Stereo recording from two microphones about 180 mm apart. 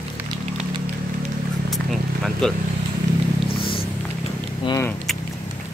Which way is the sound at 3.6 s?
30° left (ahead or behind).